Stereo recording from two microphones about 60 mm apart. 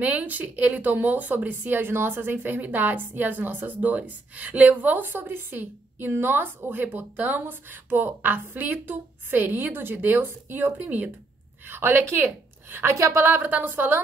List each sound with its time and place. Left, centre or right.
0.0 s a woman's voice: right
12.9 s a woman's voice: right
13.2 s a woman's voice: right